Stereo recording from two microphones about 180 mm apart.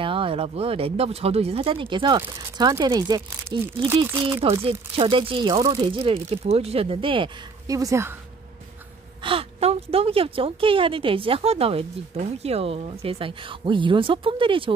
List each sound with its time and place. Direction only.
0.0 s speech: 30° right (ahead or behind)
9.2 s speech: 30° right (ahead or behind)